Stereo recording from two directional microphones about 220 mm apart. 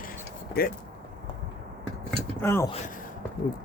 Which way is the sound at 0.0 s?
40° left (ahead or behind).